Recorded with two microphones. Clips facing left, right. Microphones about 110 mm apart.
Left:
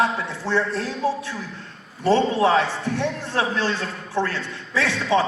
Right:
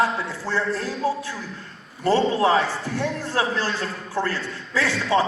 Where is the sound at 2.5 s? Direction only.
5° right (ahead or behind).